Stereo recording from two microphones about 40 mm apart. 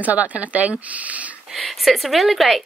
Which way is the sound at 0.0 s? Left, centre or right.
Right.